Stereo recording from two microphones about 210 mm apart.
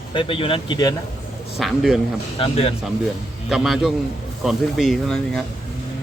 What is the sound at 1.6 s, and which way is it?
Speech, centre (ahead or behind).